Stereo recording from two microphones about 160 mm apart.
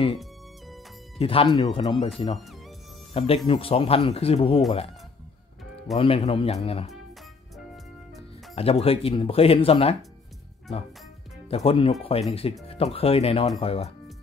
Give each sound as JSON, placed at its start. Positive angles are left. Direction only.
{"t": 0.2, "sound": "music", "side_deg": 0}
{"t": 1.2, "sound": "speech", "side_deg": 35}
{"t": 3.1, "sound": "music", "side_deg": 40}
{"t": 3.4, "sound": "speech", "side_deg": 35}
{"t": 5.9, "sound": "speech", "side_deg": 35}
{"t": 8.5, "sound": "speech", "side_deg": 40}
{"t": 11.4, "sound": "speech", "side_deg": 35}